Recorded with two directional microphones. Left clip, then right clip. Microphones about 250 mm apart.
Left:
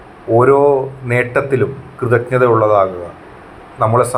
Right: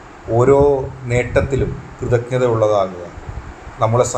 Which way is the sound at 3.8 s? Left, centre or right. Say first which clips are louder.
Left 3 dB; centre.